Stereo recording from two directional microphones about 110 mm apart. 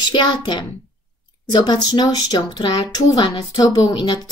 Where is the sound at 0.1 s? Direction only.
40° left (ahead or behind).